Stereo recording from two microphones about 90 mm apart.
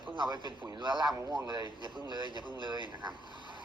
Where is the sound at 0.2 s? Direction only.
55° right (ahead or behind).